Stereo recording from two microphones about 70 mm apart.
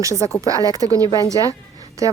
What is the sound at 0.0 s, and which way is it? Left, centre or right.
Speech, right.